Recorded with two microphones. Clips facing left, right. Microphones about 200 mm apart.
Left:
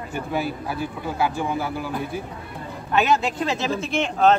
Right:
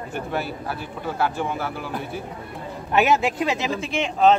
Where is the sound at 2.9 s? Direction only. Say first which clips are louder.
Right 1 dB; 20° right (ahead or behind).